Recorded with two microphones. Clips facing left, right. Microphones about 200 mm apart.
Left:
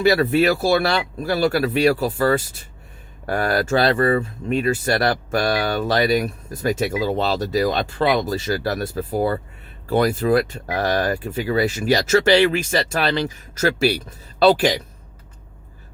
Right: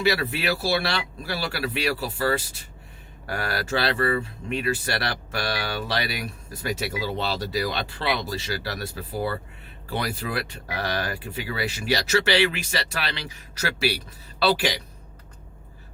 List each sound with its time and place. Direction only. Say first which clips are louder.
0.0 s speech: left 8 dB; 45° left (ahead or behind)